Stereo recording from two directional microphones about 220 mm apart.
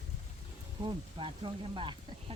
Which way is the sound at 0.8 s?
25° right (ahead or behind).